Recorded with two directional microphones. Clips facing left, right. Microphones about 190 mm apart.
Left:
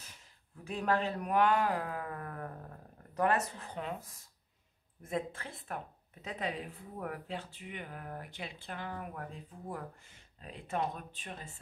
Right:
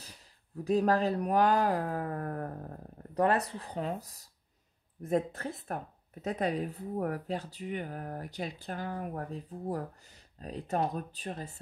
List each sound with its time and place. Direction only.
0.7 s speech: 40° right (ahead or behind)